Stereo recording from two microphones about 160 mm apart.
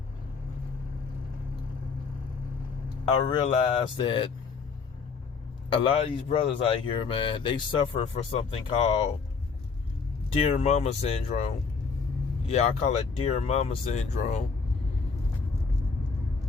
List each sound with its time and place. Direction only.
3.2 s speech: 30° left (ahead or behind)
5.7 s speech: 35° left (ahead or behind)
10.3 s speech: 40° left (ahead or behind)
12.5 s speech: 45° left (ahead or behind)